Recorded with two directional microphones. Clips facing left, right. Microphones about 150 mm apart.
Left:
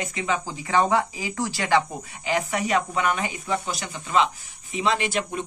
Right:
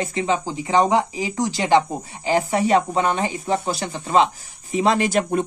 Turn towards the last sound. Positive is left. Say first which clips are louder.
# right 6 dB
turn(degrees=-45)  # may be behind; listen again after turning